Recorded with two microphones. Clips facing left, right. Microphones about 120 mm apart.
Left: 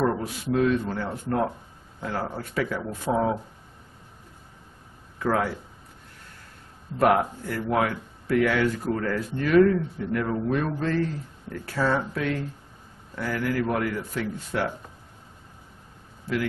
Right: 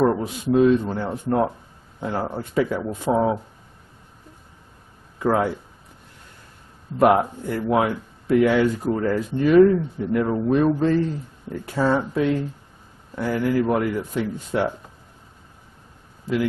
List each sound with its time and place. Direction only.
0.0 s speech: 20° right (ahead or behind)
5.2 s speech: 20° right (ahead or behind)
7.0 s speech: 20° right (ahead or behind)